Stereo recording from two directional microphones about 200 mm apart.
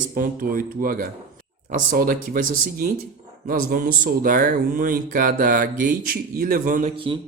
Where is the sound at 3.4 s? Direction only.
45° right (ahead or behind).